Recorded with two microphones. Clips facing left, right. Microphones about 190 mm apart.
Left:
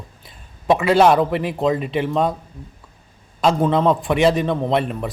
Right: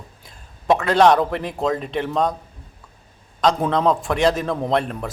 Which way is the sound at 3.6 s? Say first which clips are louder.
Left 2 dB; centre (ahead or behind).